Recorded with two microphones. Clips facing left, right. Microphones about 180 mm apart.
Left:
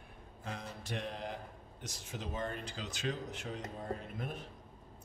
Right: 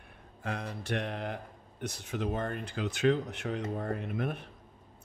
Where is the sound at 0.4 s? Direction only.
65° right (ahead or behind).